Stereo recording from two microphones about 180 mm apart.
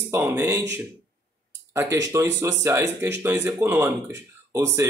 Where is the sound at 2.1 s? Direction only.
15° right (ahead or behind).